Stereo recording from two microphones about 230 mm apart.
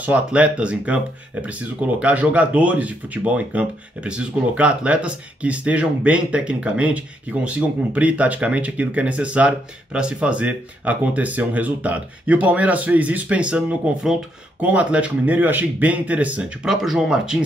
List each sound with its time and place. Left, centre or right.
0.0 s speech: centre